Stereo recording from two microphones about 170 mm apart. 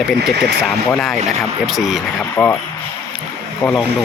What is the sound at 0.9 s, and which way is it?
Speech, 5° left (ahead or behind).